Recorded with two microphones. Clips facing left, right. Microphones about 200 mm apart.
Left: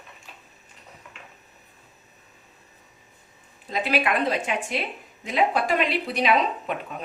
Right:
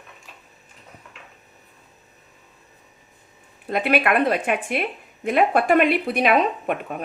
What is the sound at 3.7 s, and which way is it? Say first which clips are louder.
Speech: right 4 dB; 60° right (ahead or behind).